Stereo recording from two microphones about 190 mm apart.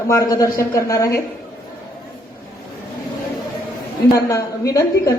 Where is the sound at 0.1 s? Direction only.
15° left (ahead or behind).